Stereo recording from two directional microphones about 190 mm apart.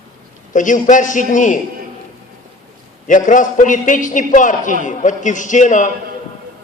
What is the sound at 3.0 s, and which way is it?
A man's voice, 45° left (ahead or behind).